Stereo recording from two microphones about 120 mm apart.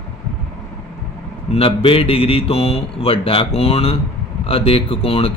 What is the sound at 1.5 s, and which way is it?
Speech, 50° left (ahead or behind).